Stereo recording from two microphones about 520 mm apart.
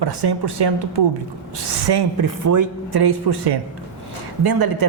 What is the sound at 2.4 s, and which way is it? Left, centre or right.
Speech, right.